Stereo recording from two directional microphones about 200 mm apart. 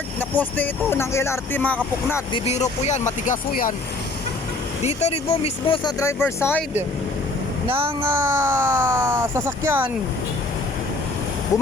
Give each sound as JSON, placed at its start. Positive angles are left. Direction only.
{"t": 0.2, "sound": "speech", "side_deg": 10}
{"t": 2.3, "sound": "speech", "side_deg": 30}
{"t": 4.9, "sound": "speech", "side_deg": 30}
{"t": 6.0, "sound": "speech", "side_deg": 15}
{"t": 7.7, "sound": "speech", "side_deg": -10}